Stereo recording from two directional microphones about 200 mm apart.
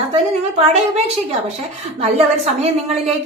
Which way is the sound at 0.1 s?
30° right (ahead or behind).